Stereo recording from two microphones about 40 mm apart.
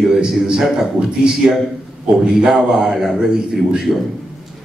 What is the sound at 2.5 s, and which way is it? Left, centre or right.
A man's voice, centre.